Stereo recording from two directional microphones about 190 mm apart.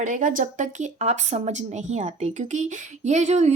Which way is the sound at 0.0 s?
45° right (ahead or behind).